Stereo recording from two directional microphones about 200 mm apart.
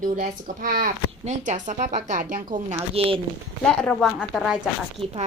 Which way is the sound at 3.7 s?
5° left (ahead or behind).